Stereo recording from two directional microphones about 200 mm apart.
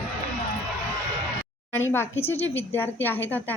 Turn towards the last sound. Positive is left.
turn(degrees=10)  # may be behind; listen again after turning